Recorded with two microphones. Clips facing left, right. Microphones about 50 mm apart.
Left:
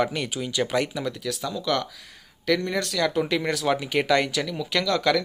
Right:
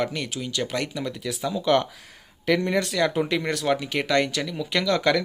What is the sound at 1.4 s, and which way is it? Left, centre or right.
Speech, centre.